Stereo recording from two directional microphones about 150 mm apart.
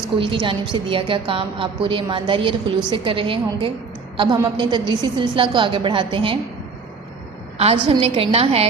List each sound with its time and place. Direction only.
0.2 s a woman's voice: 35° right (ahead or behind)
7.6 s a woman's voice: 40° right (ahead or behind)